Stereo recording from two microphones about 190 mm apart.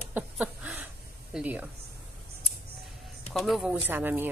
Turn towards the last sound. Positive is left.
turn(degrees=-10)  # may be behind; listen again after turning